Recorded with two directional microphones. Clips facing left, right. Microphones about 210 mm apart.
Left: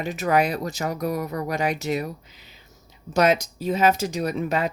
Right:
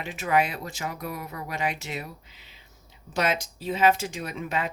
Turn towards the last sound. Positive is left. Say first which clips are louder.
# left 7 dB
turn(degrees=40)  # may be behind; listen again after turning